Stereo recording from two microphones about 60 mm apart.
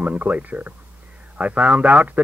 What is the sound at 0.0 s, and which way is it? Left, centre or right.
A man's voice, right.